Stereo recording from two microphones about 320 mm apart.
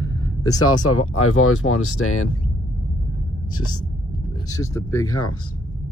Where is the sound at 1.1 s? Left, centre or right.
Left.